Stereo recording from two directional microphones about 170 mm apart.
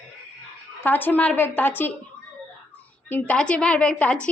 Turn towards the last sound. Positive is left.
turn(degrees=5)  # may be behind; listen again after turning